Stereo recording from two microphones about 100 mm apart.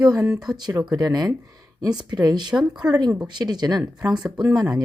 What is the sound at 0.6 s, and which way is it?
Speech, 40° right (ahead or behind).